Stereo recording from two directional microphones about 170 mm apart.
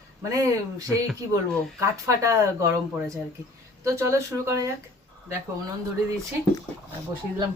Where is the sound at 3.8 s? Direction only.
15° right (ahead or behind).